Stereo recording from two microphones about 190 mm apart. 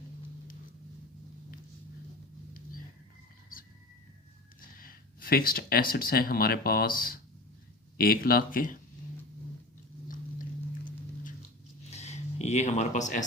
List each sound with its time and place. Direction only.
4.8 s speech: 50° left (ahead or behind)
10.8 s music: 45° left (ahead or behind)
11.9 s a sound: 35° left (ahead or behind)